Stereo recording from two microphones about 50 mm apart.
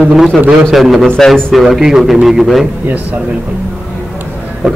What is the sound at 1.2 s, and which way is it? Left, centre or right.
Speech, centre.